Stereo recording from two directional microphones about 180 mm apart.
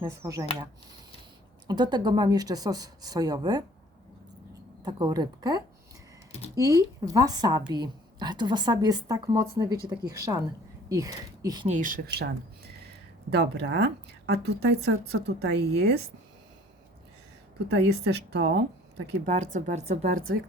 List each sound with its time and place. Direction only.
0.0 s a woman's voice: 15° right (ahead or behind)
4.8 s a woman's voice: 25° right (ahead or behind)
11.7 s speech: 45° right (ahead or behind); by 16.0 s 65° right (ahead or behind)
17.7 s a woman's voice: 70° right (ahead or behind)
19.2 s speech: 45° right (ahead or behind)